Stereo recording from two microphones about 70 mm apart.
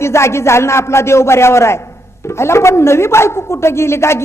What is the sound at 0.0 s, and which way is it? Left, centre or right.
A man's voice, left.